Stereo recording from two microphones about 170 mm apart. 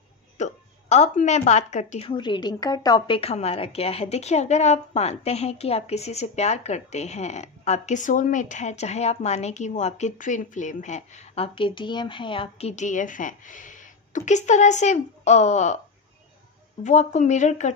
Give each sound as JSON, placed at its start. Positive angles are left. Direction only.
{"t": 0.4, "sound": "speech", "side_deg": 45}
{"t": 3.2, "sound": "a woman's voice", "side_deg": 35}
{"t": 16.8, "sound": "a woman's voice", "side_deg": 45}